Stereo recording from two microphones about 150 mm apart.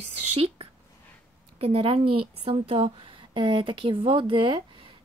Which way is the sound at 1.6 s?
40° right (ahead or behind).